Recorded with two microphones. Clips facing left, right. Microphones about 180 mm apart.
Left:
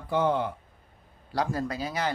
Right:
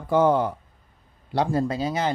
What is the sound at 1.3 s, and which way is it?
Speech, 25° right (ahead or behind).